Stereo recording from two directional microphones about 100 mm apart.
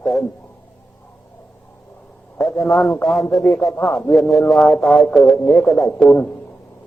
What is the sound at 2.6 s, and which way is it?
Speech, 5° left (ahead or behind).